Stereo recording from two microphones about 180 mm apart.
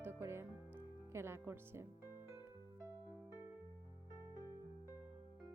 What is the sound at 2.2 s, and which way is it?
Music, 15° right (ahead or behind).